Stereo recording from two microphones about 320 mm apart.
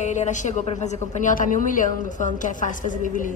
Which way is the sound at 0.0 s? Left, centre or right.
Left.